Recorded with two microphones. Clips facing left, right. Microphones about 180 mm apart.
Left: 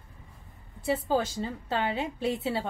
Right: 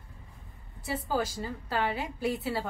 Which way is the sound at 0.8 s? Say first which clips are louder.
Left 4 dB; 25° left (ahead or behind).